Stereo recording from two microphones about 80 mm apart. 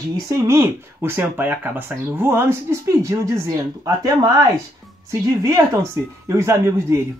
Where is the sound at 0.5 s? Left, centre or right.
Right.